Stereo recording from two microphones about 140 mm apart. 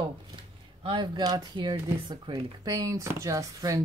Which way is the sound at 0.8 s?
35° right (ahead or behind).